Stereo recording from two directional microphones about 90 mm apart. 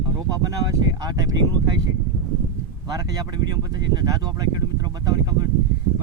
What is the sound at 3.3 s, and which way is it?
Speech, 45° right (ahead or behind).